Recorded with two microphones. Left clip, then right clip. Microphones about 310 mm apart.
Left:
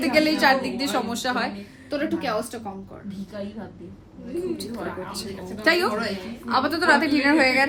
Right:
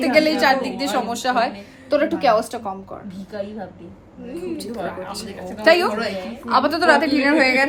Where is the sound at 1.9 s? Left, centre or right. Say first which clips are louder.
Right 9 dB; centre.